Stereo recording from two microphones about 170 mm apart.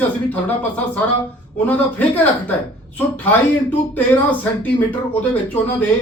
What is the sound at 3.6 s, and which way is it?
Speech, 10° left (ahead or behind).